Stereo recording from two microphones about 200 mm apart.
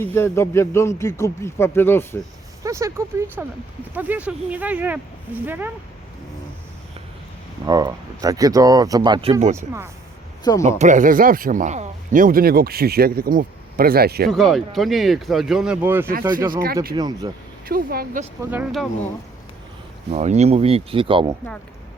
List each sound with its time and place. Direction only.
0.0 s a man's voice: 10° left (ahead or behind)
2.6 s speech: 15° right (ahead or behind)
7.7 s speech: 20° right (ahead or behind)
10.4 s speech: 20° left (ahead or behind)
10.7 s speech: 35° right (ahead or behind)
14.3 s speech: centre (ahead or behind)
16.9 s speech: 20° right (ahead or behind)
17.7 s speech: 45° right (ahead or behind)
18.5 s speech: centre (ahead or behind)
20.1 s speech: 35° right (ahead or behind)